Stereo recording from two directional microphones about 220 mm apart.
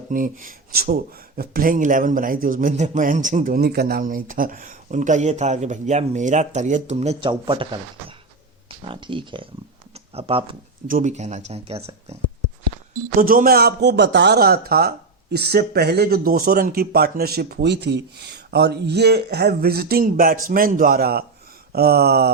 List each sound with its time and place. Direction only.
0.1 s speech: 40° right (ahead or behind)
8.8 s speech: 25° right (ahead or behind)
9.9 s a sound: 25° right (ahead or behind)
10.8 s speech: 35° right (ahead or behind)
13.1 s a man's voice: 40° right (ahead or behind)